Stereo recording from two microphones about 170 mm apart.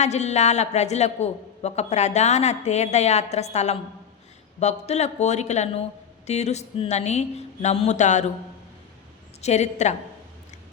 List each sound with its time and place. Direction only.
0.0 s a woman's voice: 40° left (ahead or behind)
9.4 s a woman's voice: 40° left (ahead or behind)